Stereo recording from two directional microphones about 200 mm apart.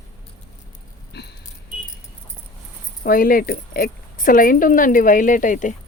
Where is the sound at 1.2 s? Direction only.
55° left (ahead or behind).